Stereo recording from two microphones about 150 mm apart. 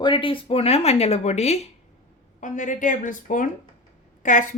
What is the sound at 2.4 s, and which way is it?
A woman's voice, 55° left (ahead or behind).